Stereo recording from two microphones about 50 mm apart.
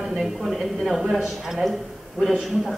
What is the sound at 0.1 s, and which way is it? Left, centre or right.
A woman's voice, centre.